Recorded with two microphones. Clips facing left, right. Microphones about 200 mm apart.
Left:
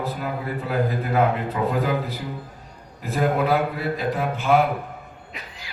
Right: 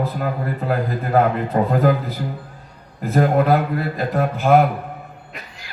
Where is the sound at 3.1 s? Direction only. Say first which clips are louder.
Right 4 dB; 50° right (ahead or behind).